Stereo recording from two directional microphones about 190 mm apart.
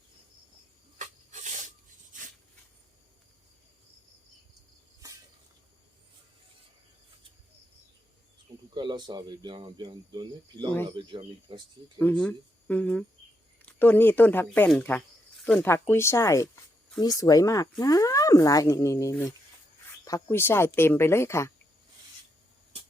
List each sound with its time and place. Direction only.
0.9 s rub: 40° right (ahead or behind)
8.7 s speech: 25° right (ahead or behind)
11.9 s speech: 5° left (ahead or behind)